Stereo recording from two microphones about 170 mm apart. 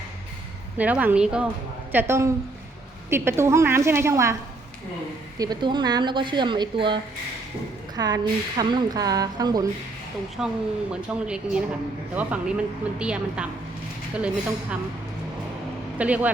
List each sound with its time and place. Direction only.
0.8 s a woman's voice: 10° right (ahead or behind)
5.4 s speech: 25° right (ahead or behind)
10.4 s a woman's voice: 5° right (ahead or behind)
16.0 s a woman's voice: 10° right (ahead or behind)